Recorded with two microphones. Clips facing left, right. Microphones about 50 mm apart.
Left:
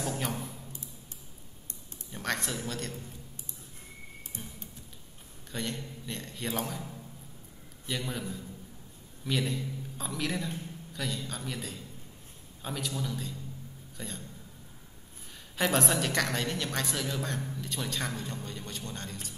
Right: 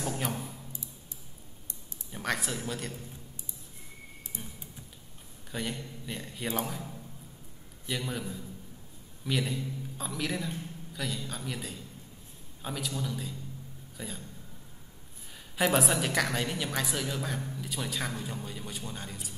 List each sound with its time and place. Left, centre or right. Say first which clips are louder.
0.2 s a sound: even; centre
2.1 s speech: right 1 dB; centre
4.3 s music: even; left
5.5 s a man's voice: even; centre
7.9 s a woman's voice: even; centre
13.9 s a sound: right 1 dB; centre
15.5 s a woman's voice: right 1 dB; centre